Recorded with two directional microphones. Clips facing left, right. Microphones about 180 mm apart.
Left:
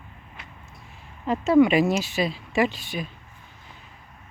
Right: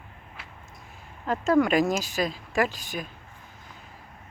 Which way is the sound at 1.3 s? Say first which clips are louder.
Left 4 dB; centre (ahead or behind).